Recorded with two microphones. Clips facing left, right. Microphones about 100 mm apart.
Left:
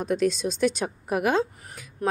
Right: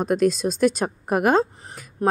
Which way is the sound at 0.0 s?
45° right (ahead or behind).